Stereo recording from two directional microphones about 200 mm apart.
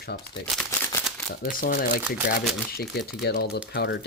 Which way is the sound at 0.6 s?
10° left (ahead or behind).